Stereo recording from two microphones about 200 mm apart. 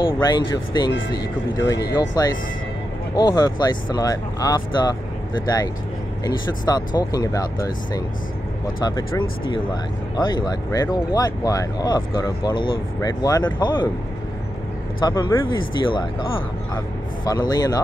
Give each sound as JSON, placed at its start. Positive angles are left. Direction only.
{"t": 0.0, "sound": "speech", "side_deg": 20}
{"t": 6.2, "sound": "speech", "side_deg": 20}
{"t": 15.0, "sound": "speech", "side_deg": 20}